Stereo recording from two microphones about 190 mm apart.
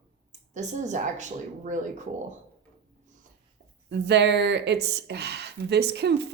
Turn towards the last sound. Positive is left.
turn(degrees=-60)  # may be behind; listen again after turning